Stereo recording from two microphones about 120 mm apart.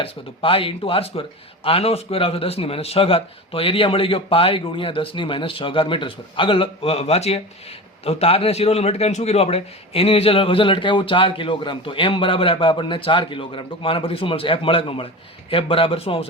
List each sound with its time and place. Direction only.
0.0 s a man's voice: 50° left (ahead or behind)